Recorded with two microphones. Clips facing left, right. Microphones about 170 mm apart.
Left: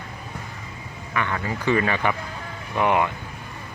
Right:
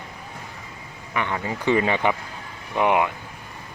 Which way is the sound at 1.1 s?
20° right (ahead or behind).